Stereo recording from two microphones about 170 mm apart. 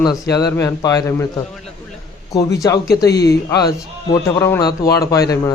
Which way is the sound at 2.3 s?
20° left (ahead or behind).